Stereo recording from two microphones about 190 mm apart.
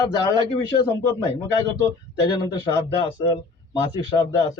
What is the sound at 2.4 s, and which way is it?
Speech, 20° left (ahead or behind).